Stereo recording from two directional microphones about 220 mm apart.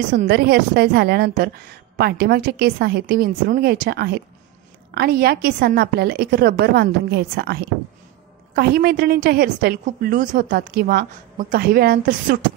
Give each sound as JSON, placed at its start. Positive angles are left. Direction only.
{"t": 0.1, "sound": "a woman's voice", "side_deg": -40}